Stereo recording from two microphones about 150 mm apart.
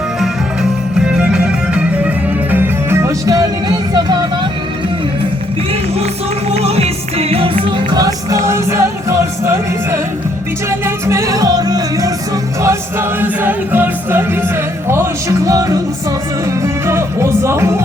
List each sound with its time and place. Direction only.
0.2 s music: 5° right (ahead or behind); by 4.2 s 25° right (ahead or behind)
6.6 s music: 45° right (ahead or behind)
8.0 s music: 20° right (ahead or behind)
12.6 s music: 15° right (ahead or behind)
15.4 s music: 20° right (ahead or behind)